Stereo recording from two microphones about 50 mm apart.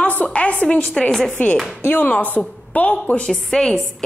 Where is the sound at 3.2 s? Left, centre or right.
Centre.